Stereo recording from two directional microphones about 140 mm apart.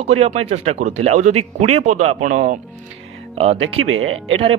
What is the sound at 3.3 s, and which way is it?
Speech, 50° right (ahead or behind).